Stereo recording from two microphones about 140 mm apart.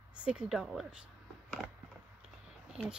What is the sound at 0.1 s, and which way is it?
Speech, 10° right (ahead or behind).